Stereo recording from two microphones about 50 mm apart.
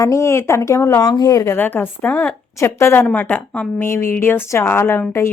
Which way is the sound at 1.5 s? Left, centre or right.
Left.